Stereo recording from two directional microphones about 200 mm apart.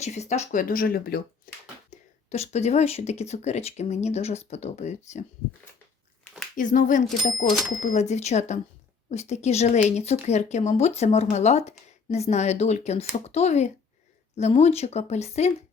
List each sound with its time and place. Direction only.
0.0 s speech: 35° left (ahead or behind)
1.9 s speech: 35° left (ahead or behind)
6.6 s speech: 40° left (ahead or behind)